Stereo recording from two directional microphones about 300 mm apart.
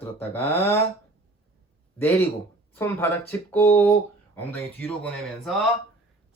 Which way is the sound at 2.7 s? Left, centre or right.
Centre.